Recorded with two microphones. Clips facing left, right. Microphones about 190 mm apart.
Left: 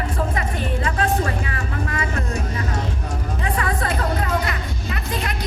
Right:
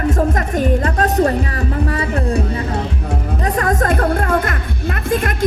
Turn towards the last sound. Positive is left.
turn(degrees=-50)  # may be behind; listen again after turning